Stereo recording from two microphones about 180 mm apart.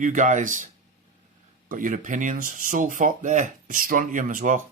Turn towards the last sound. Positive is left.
turn(degrees=-45)  # may be behind; listen again after turning